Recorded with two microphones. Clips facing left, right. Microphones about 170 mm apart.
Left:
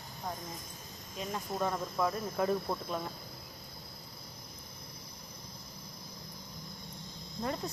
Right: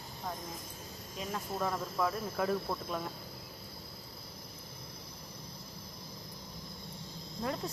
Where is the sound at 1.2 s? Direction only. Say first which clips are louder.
Left 1 dB; 5° right (ahead or behind).